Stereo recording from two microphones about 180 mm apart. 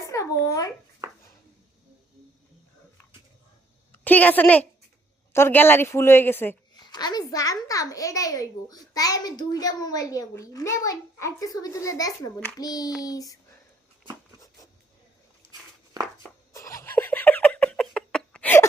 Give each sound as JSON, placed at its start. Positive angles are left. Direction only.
{"t": 0.0, "sound": "babbling", "side_deg": 15}
{"t": 4.0, "sound": "a woman's voice", "side_deg": 10}
{"t": 6.8, "sound": "a child's voice", "side_deg": 25}
{"t": 16.5, "sound": "a sound", "side_deg": 20}